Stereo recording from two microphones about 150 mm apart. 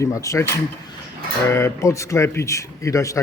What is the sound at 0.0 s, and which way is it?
Speech, 20° left (ahead or behind).